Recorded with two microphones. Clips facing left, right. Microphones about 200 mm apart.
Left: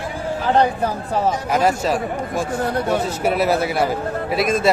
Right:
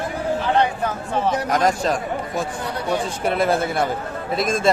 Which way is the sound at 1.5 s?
5° left (ahead or behind).